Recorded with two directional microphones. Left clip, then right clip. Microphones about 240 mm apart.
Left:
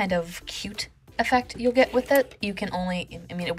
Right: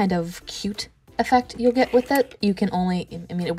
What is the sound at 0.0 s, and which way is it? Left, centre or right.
Speech, centre.